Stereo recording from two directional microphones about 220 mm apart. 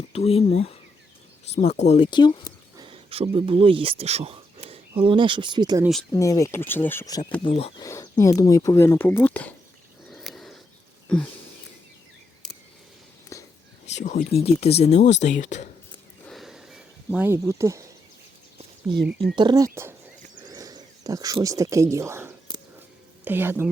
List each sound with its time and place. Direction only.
0.1 s speech: 25° left (ahead or behind)
1.5 s speech: 30° left (ahead or behind)
2.7 s speech: 25° right (ahead or behind)
5.8 s speech: centre (ahead or behind)
6.1 s speech: 15° left (ahead or behind)
7.4 s speech: 25° left (ahead or behind); by 9.6 s 5° left (ahead or behind)
10.1 s a sound: centre (ahead or behind)
11.1 s speech: 5° left (ahead or behind)
13.3 s whispering: 15° left (ahead or behind)
13.8 s speech: 30° left (ahead or behind)
16.2 s a sound: centre (ahead or behind)
19.4 s speech: 20° right (ahead or behind)
20.3 s a sound: 20° right (ahead or behind)
23.2 s speech: 10° right (ahead or behind)